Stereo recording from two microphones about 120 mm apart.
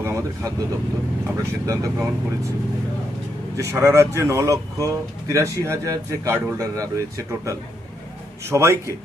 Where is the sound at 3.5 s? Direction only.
25° right (ahead or behind).